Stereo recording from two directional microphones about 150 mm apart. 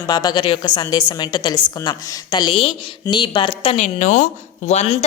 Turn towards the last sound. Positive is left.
turn(degrees=45)  # may be behind; listen again after turning